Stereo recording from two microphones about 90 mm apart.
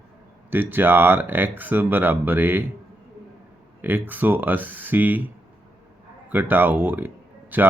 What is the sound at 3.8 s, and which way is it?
Speech, 20° right (ahead or behind).